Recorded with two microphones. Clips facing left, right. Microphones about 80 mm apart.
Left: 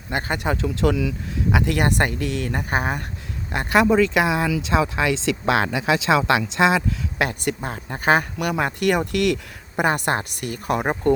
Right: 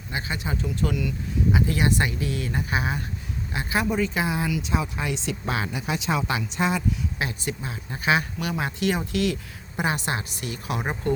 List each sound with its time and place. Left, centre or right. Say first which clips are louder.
0.1 s speech: left 6 dB; left
1.5 s speech: left 3 dB; left
3.5 s speech: left 8 dB; left
7.3 s speech: left 6 dB; left